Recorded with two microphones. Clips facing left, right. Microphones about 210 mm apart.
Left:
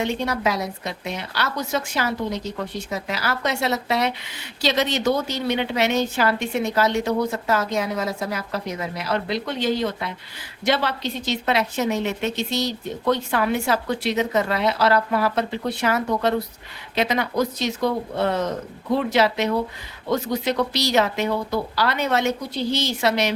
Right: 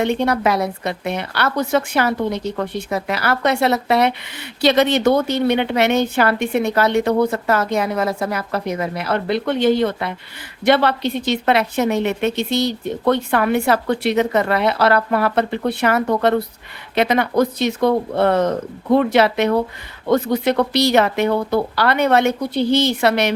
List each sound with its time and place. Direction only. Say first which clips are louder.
0.0 s a woman's voice: right 6 dB; 60° right (ahead or behind)